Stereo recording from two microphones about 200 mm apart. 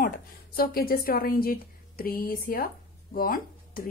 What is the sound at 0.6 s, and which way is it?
A woman's voice, 45° left (ahead or behind).